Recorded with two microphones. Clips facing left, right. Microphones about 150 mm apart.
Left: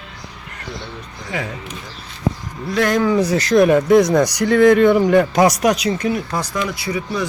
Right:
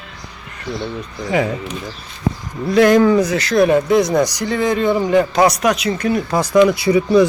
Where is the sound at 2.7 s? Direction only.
5° right (ahead or behind).